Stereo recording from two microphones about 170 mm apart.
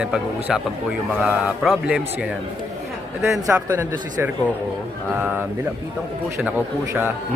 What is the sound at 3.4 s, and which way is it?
Speech, 15° right (ahead or behind).